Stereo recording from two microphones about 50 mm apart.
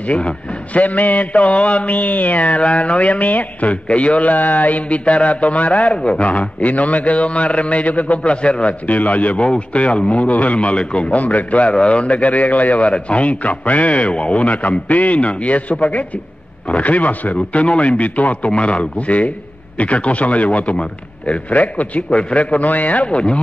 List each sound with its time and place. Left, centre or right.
0.0 s a man's voice: left
21.5 s a man's voice: left